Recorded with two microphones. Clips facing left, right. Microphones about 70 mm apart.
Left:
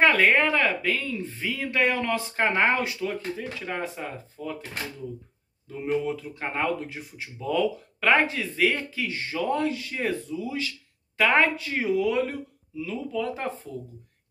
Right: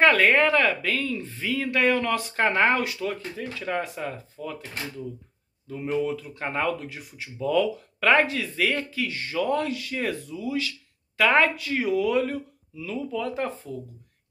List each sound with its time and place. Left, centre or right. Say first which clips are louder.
0.0 s speech: right 1 dB; centre
5.7 s speech: even; centre